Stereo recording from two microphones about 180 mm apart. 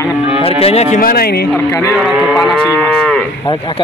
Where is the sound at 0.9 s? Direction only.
55° left (ahead or behind).